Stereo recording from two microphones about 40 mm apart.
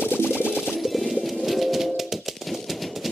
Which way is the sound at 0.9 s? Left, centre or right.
Centre.